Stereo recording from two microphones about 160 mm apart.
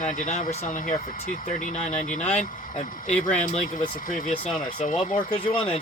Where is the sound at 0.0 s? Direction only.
55° left (ahead or behind).